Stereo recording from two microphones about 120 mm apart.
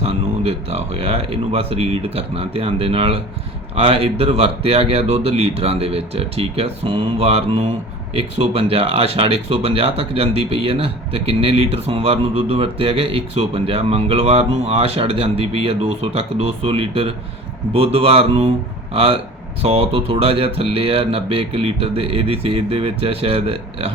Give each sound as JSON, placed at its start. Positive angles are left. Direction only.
{"t": 0.0, "sound": "speech", "side_deg": -55}